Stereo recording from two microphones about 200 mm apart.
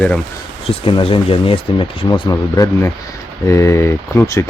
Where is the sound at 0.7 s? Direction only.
25° left (ahead or behind).